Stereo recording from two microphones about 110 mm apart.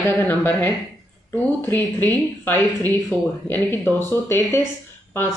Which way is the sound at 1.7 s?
20° left (ahead or behind).